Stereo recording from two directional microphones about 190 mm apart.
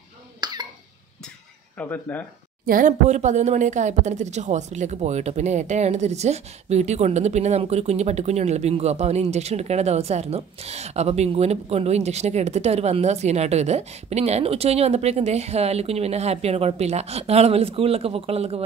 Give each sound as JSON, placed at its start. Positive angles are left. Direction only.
{"t": 0.4, "sound": "cough", "side_deg": -20}
{"t": 1.8, "sound": "speech", "side_deg": 10}
{"t": 2.6, "sound": "a woman's voice", "side_deg": -45}